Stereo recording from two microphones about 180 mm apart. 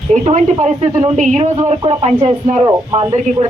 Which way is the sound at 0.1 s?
40° right (ahead or behind).